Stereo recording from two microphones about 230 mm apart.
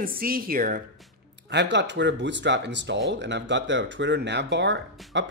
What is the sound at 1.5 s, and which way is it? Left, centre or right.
Speech, right.